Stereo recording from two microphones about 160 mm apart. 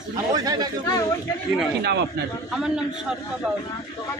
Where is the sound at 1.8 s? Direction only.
90° right.